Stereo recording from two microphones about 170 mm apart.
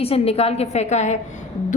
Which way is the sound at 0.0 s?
35° left (ahead or behind).